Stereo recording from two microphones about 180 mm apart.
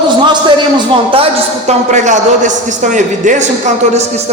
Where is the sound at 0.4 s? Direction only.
30° right (ahead or behind).